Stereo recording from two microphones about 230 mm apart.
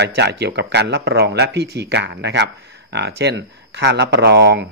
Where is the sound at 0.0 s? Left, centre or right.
Right.